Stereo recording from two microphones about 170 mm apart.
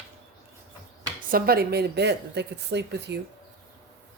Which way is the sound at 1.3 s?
60° right (ahead or behind).